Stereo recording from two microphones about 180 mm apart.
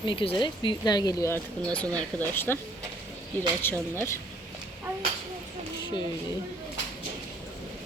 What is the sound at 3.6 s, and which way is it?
Speech, 10° left (ahead or behind).